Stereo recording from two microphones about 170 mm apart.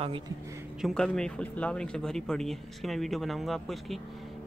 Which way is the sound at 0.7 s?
Centre (ahead or behind).